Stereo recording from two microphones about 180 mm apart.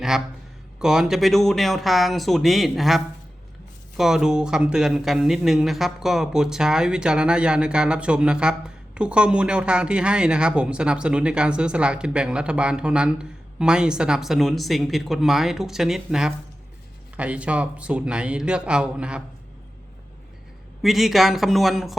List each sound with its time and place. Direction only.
0.8 s speech: 5° right (ahead or behind)
20.8 s speech: centre (ahead or behind)